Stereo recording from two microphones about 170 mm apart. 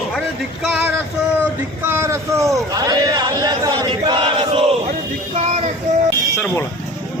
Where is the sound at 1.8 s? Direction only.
15° right (ahead or behind).